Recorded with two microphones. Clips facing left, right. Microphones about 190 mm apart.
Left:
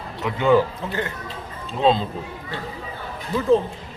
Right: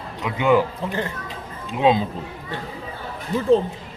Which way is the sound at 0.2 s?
15° right (ahead or behind).